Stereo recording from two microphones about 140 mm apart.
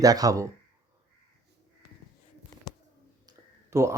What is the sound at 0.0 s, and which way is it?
Speech, 25° right (ahead or behind).